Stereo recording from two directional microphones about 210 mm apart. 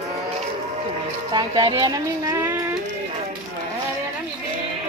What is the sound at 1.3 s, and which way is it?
Speech, 20° right (ahead or behind).